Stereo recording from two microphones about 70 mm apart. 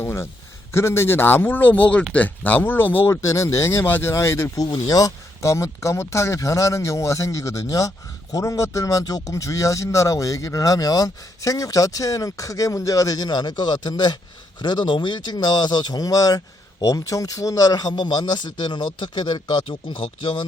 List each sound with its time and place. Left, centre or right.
0.0 s a sound: left
0.7 s a man's voice: left
3.1 s speech: left
3.8 s a man's voice: left
4.1 s a man's voice: left
4.5 s a man's voice: left